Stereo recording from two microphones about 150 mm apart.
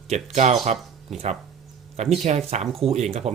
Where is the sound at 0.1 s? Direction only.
45° right (ahead or behind).